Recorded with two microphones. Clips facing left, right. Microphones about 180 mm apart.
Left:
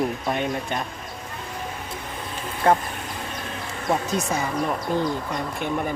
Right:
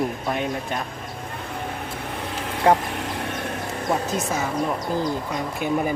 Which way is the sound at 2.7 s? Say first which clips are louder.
Right 4 dB; 70° right (ahead or behind).